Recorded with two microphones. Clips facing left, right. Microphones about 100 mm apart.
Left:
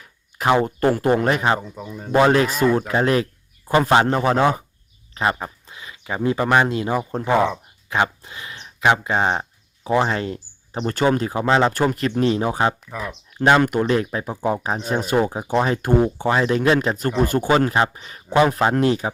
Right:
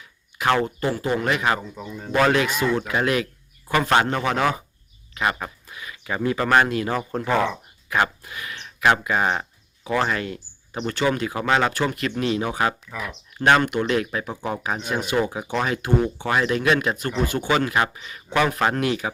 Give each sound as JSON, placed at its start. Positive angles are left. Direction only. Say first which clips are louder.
{"t": 0.6, "sound": "speech", "louder": "left 6 dB", "side_deg": 45}
{"t": 1.1, "sound": "speech", "louder": "left 4 dB", "side_deg": 40}
{"t": 1.7, "sound": "speech", "louder": "left 1 dB", "side_deg": 10}
{"t": 2.3, "sound": "speech", "louder": "left 4 dB", "side_deg": 40}
{"t": 11.3, "sound": "speech", "louder": "left 3 dB", "side_deg": 25}
{"t": 11.7, "sound": "speech", "louder": "left 4 dB", "side_deg": 40}
{"t": 18.3, "sound": "speech", "louder": "left 4 dB", "side_deg": 25}